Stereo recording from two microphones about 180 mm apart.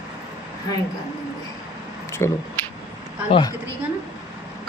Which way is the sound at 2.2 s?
15° left (ahead or behind).